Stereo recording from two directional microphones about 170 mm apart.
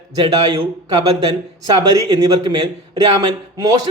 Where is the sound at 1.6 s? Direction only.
25° right (ahead or behind).